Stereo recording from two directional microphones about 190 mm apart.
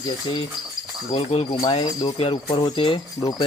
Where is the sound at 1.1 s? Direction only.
30° left (ahead or behind).